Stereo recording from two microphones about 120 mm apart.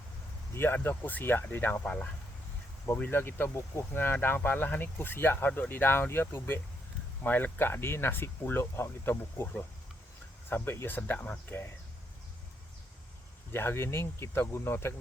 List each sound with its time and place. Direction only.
0.5 s speech: 15° left (ahead or behind)
13.5 s speech: 20° left (ahead or behind)